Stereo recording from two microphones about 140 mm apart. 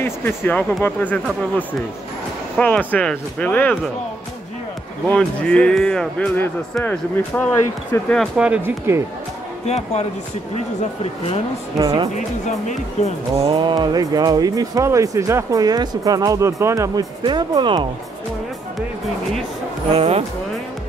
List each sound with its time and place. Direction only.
0.0 s speech: 15° left (ahead or behind)
2.5 s speech: 10° left (ahead or behind)
5.0 s speech: 10° left (ahead or behind)
8.4 s speech: 10° right (ahead or behind)
9.7 s speech: 50° left (ahead or behind)
11.8 s speech: 35° right (ahead or behind)
12.4 s speech: 50° left (ahead or behind)
13.4 s speech: 35° right (ahead or behind)
17.2 s speech: 35° right (ahead or behind)
19.9 s speech: 45° right (ahead or behind)